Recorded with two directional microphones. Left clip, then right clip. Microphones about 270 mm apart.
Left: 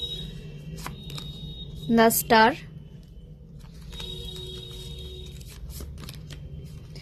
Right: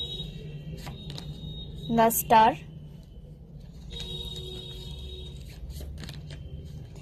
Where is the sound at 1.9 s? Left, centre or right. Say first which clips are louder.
Left 1 dB; left.